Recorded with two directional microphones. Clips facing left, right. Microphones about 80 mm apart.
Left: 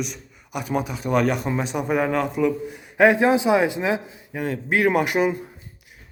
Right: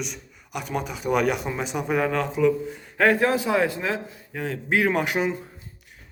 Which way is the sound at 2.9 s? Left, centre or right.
Centre.